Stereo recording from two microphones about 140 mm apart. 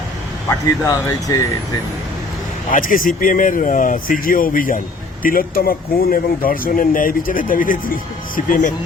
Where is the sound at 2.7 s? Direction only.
75° left (ahead or behind).